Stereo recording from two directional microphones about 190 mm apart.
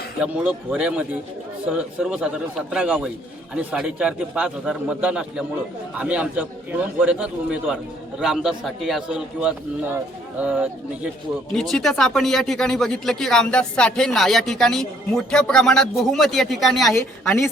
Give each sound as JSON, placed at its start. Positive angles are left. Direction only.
{"t": 0.2, "sound": "speech", "side_deg": -5}
{"t": 16.9, "sound": "a woman's voice", "side_deg": 15}